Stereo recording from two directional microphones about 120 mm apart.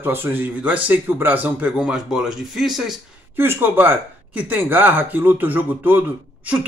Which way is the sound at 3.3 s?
20° right (ahead or behind).